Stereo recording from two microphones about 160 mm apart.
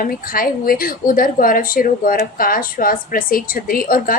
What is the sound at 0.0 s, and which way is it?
A woman's voice, 60° left (ahead or behind).